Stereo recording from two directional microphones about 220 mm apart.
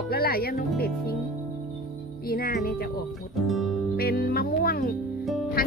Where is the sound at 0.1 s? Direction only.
45° left (ahead or behind).